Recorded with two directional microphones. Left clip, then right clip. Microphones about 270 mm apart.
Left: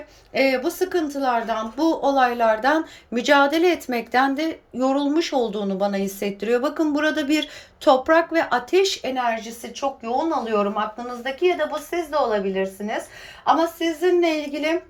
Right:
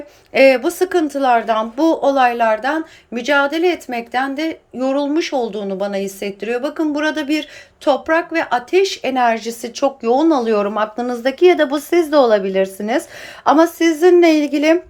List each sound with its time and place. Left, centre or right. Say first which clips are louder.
0.3 s a woman's voice: right 9 dB; centre